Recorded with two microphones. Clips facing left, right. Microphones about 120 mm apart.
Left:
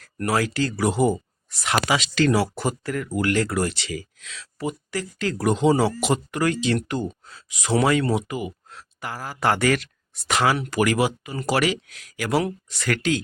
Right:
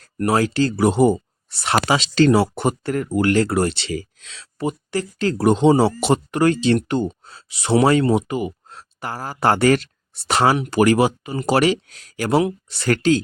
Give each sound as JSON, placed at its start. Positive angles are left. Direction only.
{"t": 0.0, "sound": "speech", "side_deg": -30}